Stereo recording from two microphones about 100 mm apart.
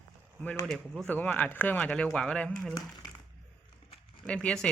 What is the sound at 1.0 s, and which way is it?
Speech, 15° left (ahead or behind).